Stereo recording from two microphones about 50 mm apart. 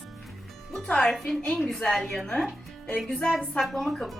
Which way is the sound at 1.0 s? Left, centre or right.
Centre.